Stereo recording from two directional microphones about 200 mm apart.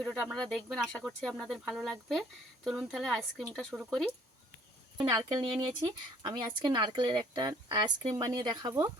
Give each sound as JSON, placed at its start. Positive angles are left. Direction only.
{"t": 0.0, "sound": "speech", "side_deg": 0}
{"t": 5.0, "sound": "speech", "side_deg": -20}